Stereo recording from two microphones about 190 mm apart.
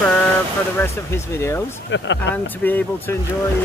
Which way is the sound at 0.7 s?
15° left (ahead or behind).